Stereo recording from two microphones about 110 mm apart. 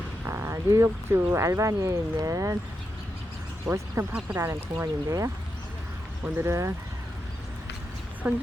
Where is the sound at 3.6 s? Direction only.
25° right (ahead or behind).